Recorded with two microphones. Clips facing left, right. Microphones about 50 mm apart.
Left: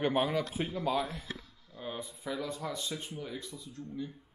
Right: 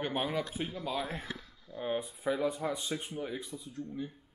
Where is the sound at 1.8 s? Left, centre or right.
Right.